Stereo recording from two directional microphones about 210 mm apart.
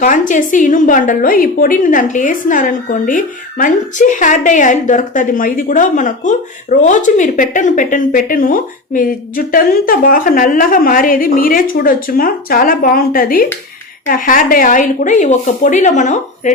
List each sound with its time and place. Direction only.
0.0 s a woman's voice: 40° left (ahead or behind)